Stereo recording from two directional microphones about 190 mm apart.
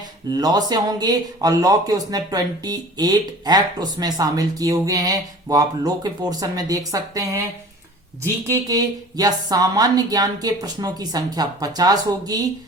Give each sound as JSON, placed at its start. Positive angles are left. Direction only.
{"t": 0.3, "sound": "speech", "side_deg": -20}